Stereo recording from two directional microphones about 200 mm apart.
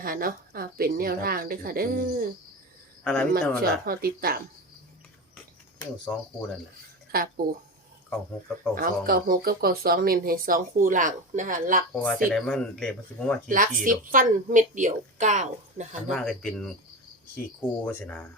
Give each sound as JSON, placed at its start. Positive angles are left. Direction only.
{"t": 0.0, "sound": "speech", "side_deg": -45}
{"t": 3.0, "sound": "speech", "side_deg": 5}
{"t": 3.6, "sound": "speech", "side_deg": -50}
{"t": 6.1, "sound": "speech", "side_deg": 5}
{"t": 7.1, "sound": "speech", "side_deg": -45}
{"t": 8.7, "sound": "speech", "side_deg": -45}
{"t": 11.9, "sound": "speech", "side_deg": 5}
{"t": 13.5, "sound": "a woman's voice", "side_deg": -45}
{"t": 16.0, "sound": "speech", "side_deg": 0}